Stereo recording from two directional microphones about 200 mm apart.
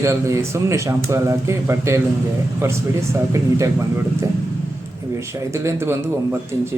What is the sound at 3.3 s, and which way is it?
Speech, 15° right (ahead or behind).